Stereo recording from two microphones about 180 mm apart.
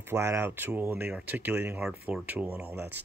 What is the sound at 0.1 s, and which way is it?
Speech, 15° right (ahead or behind).